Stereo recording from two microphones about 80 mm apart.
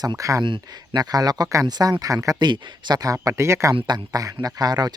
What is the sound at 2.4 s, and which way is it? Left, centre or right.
Speech, right.